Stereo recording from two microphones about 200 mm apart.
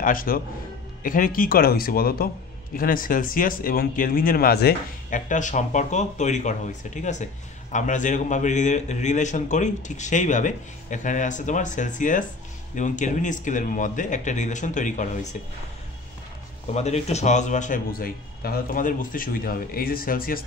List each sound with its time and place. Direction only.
0.0 s a man's voice: 45° left (ahead or behind)
16.7 s a man's voice: 35° left (ahead or behind)